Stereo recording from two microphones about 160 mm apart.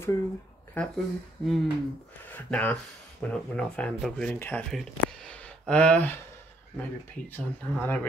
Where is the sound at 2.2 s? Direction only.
10° left (ahead or behind).